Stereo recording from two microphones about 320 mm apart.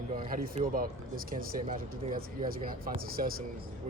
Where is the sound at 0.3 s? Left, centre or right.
Right.